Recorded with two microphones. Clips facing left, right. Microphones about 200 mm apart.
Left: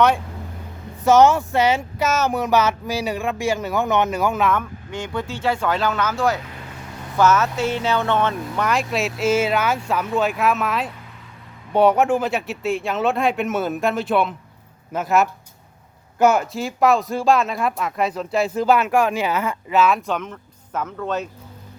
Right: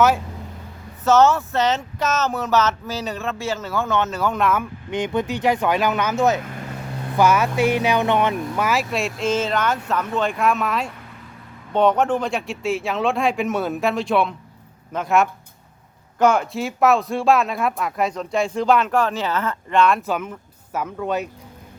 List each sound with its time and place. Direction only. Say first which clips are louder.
1.0 s speech: left 2 dB; 15° left (ahead or behind)
4.4 s speech: right 2 dB; centre (ahead or behind)
4.9 s speech: right 7 dB; 20° right (ahead or behind)